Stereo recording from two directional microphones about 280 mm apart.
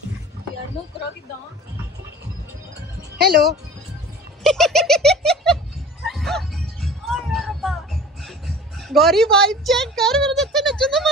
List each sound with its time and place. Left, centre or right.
0.8 s a sound: centre
3.2 s speech: right
4.4 s giggle: centre
6.0 s music: centre